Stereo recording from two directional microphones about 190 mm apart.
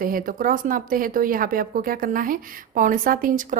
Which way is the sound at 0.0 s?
45° right (ahead or behind).